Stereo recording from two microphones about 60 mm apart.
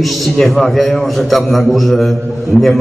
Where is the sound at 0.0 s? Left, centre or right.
Centre.